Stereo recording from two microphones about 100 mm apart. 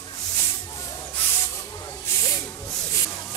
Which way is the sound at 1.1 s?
25° left (ahead or behind).